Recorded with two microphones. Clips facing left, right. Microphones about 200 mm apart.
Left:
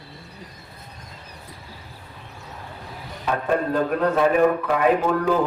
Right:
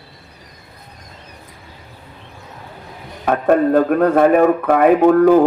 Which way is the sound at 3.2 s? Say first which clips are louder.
Right 9 dB; 55° right (ahead or behind).